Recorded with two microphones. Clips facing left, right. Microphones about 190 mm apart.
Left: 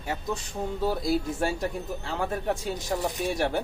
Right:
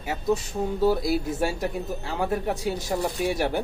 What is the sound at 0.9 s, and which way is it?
Speech, 5° right (ahead or behind).